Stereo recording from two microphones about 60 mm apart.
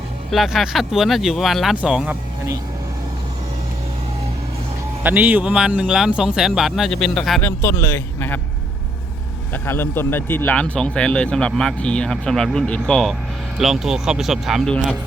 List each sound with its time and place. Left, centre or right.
0.3 s speech: centre
1.7 s speech: right
5.0 s speech: right
5.5 s speech: centre
7.4 s speech: left
9.5 s speech: left
10.5 s speech: centre
12.6 s speech: left
13.6 s speech: centre